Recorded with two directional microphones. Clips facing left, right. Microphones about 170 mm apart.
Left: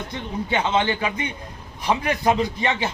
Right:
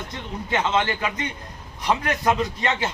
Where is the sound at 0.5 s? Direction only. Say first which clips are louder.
Left 1 dB; 20° left (ahead or behind).